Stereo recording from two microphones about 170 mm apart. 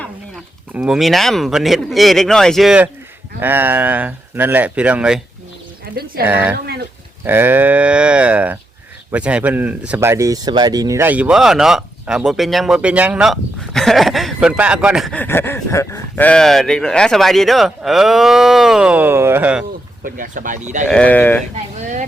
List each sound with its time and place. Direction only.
0.7 s speech: 5° right (ahead or behind)
5.8 s speech: 65° right (ahead or behind)
6.2 s speech: 10° right (ahead or behind)
15.1 s speech: 10° left (ahead or behind); by 19.6 s 10° right (ahead or behind)
20.1 s speech: 50° right (ahead or behind)
20.9 s sheep: 10° left (ahead or behind)
21.5 s speech: 45° right (ahead or behind)